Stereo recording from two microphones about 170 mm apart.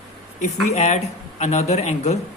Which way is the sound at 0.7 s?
40° left (ahead or behind).